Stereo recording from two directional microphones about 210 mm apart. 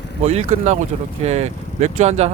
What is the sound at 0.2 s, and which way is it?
Speech, 30° right (ahead or behind).